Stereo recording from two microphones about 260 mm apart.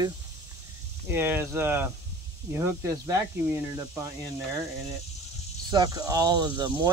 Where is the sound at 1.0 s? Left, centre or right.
Centre.